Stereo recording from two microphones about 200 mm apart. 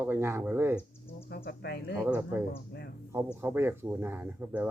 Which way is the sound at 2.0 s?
10° right (ahead or behind).